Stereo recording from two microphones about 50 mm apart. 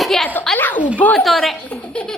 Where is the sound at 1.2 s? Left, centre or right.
Centre.